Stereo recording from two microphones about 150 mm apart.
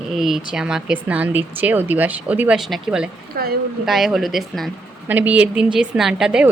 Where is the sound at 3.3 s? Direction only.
90° right.